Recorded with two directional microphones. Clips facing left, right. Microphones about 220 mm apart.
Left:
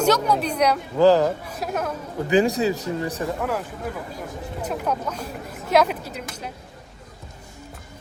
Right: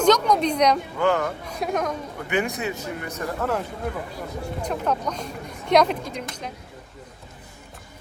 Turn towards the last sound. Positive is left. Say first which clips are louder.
# even
turn(degrees=5)  # may be behind; listen again after turning